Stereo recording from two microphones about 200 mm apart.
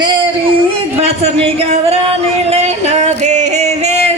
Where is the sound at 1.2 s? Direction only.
30° right (ahead or behind).